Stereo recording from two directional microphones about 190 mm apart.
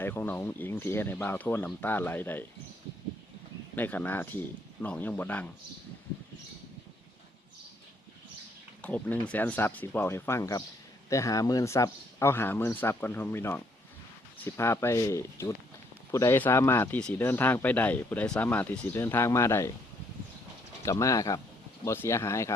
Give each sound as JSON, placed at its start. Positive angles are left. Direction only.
{"t": 0.0, "sound": "speech", "side_deg": 10}
{"t": 3.8, "sound": "speech", "side_deg": 10}
{"t": 8.8, "sound": "speech", "side_deg": 10}
{"t": 20.8, "sound": "speech", "side_deg": 15}